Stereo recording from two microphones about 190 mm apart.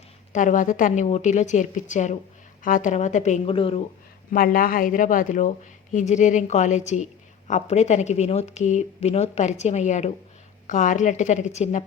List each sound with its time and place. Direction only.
0.3 s speech: 45° left (ahead or behind)
4.3 s speech: 50° left (ahead or behind)